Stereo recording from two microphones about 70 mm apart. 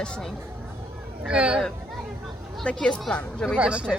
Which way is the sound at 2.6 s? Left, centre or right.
Centre.